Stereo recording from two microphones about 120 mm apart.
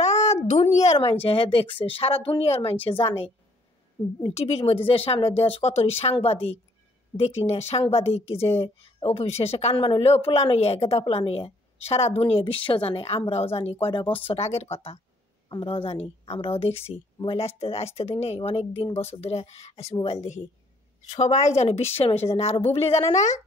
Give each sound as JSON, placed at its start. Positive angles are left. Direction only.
{"t": 0.0, "sound": "a sound", "side_deg": 65}
{"t": 1.2, "sound": "speech", "side_deg": 50}
{"t": 4.3, "sound": "a woman's voice", "side_deg": 60}